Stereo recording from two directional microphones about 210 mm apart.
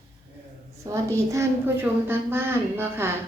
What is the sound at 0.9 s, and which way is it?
A woman's voice, 15° right (ahead or behind).